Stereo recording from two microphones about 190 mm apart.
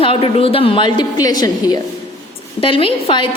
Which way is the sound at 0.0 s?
30° left (ahead or behind).